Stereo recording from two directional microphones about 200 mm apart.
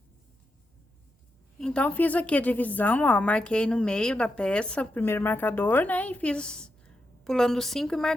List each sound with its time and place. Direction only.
1.5 s a woman's voice: 5° left (ahead or behind)